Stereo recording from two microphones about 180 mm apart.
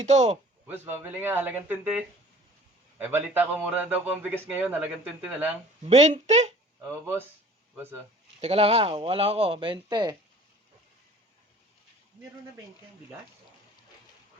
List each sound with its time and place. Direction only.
0.0 s speech: 40° right (ahead or behind)
0.7 s a man's voice: 10° right (ahead or behind)
5.8 s speech: 35° right (ahead or behind)
7.8 s a man's voice: 15° right (ahead or behind)
8.4 s speech: 30° right (ahead or behind)